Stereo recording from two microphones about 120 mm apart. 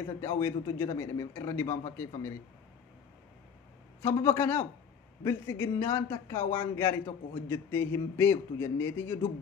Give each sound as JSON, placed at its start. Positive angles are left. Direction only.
{"t": 0.2, "sound": "a man's voice", "side_deg": 20}
{"t": 4.0, "sound": "a man's voice", "side_deg": 25}